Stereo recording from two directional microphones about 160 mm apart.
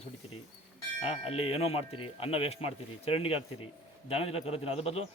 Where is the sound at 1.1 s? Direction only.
40° left (ahead or behind).